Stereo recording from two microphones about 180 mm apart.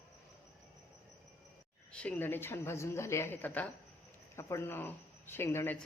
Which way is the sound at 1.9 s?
5° left (ahead or behind).